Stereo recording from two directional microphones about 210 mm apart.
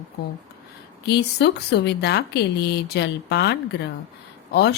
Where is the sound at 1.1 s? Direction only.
55° left (ahead or behind).